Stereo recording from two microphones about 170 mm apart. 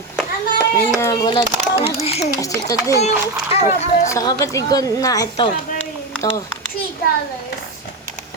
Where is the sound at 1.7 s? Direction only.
35° left (ahead or behind).